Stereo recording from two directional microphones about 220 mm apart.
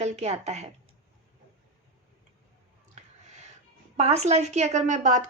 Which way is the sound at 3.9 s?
30° right (ahead or behind).